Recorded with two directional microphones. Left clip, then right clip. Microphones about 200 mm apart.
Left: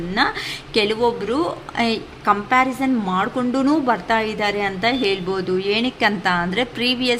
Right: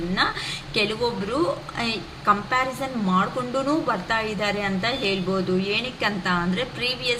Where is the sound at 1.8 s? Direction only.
50° left (ahead or behind).